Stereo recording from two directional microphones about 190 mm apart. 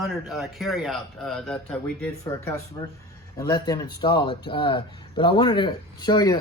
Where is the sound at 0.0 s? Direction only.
Centre (ahead or behind).